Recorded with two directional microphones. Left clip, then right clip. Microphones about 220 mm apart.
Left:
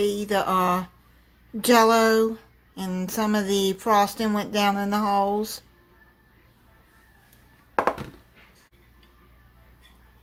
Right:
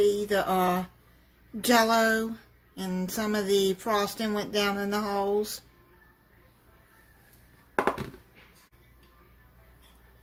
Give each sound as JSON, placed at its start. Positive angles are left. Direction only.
{"t": 0.0, "sound": "a woman's voice", "side_deg": 25}